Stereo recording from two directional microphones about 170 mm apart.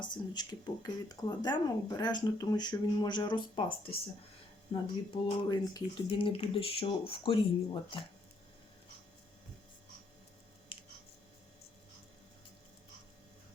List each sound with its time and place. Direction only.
0.0 s speech: 25° left (ahead or behind)
5.4 s speech: 25° left (ahead or behind)